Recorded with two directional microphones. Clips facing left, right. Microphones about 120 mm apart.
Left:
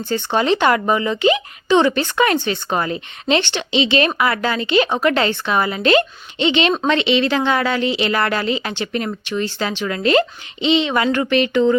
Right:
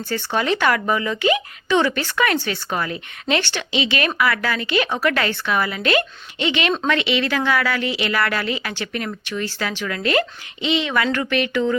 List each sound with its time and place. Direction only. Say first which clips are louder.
0.1 s speech: left 4 dB; 25° left (ahead or behind)